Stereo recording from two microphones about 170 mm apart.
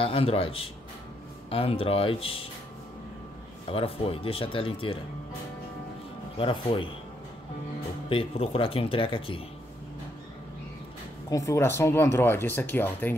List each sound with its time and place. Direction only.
0.0 s speech: 35° left (ahead or behind)
3.7 s speech: 35° left (ahead or behind)
6.3 s speech: 30° left (ahead or behind)
8.1 s speech: 30° left (ahead or behind)
11.2 s speech: 20° left (ahead or behind)